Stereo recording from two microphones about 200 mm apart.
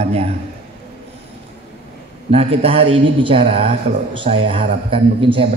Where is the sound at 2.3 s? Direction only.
30° right (ahead or behind).